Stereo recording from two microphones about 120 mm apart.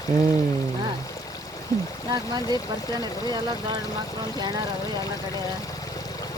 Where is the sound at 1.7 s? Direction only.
30° left (ahead or behind).